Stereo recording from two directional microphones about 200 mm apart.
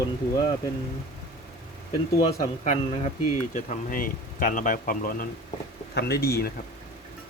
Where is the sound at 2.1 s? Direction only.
40° left (ahead or behind).